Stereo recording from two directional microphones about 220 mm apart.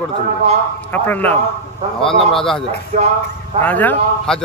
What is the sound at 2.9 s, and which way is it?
Speech, 30° right (ahead or behind).